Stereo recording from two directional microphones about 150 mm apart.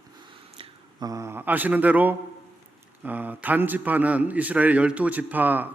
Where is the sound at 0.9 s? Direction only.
25° right (ahead or behind).